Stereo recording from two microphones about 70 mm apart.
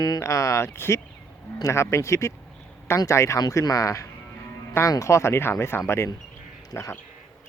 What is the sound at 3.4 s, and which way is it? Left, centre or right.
Speech, left.